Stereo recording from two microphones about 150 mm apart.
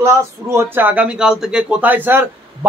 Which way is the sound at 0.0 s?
15° right (ahead or behind).